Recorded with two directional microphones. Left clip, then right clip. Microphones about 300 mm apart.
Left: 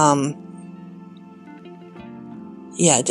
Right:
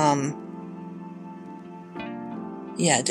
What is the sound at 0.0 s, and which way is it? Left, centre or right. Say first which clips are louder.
Speech: left 5 dB; centre.